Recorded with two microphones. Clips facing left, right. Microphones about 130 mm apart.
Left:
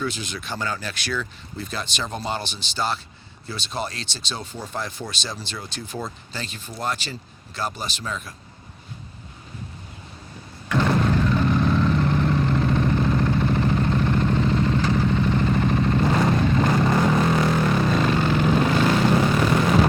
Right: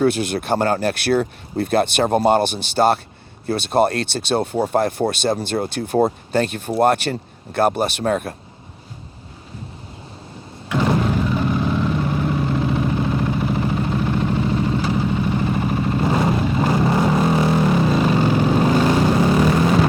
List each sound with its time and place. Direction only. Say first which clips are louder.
0.0 s speech: right 11 dB; 60° right (ahead or behind)
10.7 s vehicle: right 2 dB; 10° right (ahead or behind)